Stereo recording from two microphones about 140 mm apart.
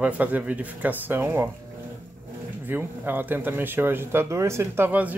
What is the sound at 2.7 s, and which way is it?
Speech, 15° right (ahead or behind).